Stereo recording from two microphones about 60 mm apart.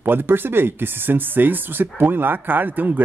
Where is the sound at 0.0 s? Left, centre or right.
Right.